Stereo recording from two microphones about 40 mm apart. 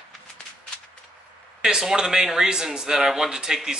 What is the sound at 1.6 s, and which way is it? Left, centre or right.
Speech, centre.